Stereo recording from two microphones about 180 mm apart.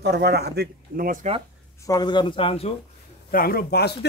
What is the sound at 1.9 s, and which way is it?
Speech, 25° left (ahead or behind).